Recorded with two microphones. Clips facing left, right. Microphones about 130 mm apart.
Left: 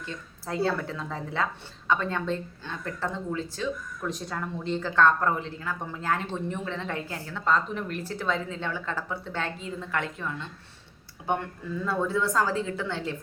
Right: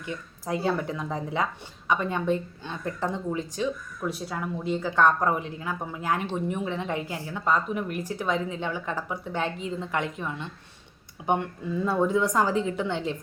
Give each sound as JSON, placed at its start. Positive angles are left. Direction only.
{"t": 0.0, "sound": "speech", "side_deg": -15}